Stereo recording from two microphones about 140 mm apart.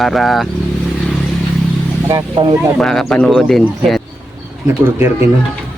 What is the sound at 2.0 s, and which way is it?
Speech, 30° right (ahead or behind).